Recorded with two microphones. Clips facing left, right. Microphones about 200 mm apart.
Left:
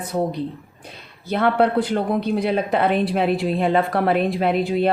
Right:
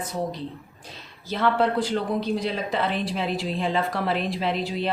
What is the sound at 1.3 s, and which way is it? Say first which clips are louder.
Speech: left 4 dB; 60° left (ahead or behind).